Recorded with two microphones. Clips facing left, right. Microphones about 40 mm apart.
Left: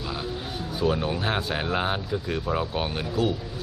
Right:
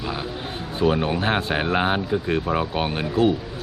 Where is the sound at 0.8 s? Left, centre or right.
Right.